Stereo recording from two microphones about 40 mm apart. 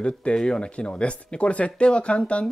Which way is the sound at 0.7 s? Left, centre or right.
Left.